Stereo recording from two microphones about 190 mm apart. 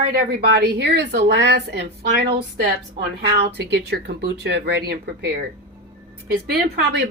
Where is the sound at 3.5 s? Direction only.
60° right (ahead or behind).